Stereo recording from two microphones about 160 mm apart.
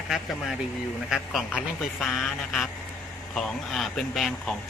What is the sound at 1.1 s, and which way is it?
Speech, centre (ahead or behind).